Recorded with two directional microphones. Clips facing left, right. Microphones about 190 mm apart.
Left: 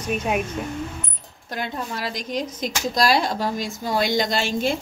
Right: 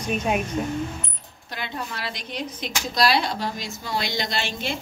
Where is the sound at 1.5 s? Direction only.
45° left (ahead or behind).